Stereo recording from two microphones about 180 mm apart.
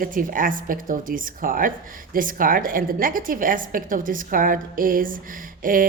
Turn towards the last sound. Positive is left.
turn(degrees=-50)  # may be behind; listen again after turning